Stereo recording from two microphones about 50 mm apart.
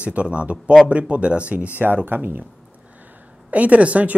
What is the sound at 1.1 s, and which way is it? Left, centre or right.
Speech, right.